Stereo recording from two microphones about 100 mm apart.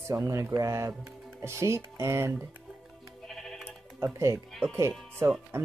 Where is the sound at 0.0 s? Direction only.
30° right (ahead or behind).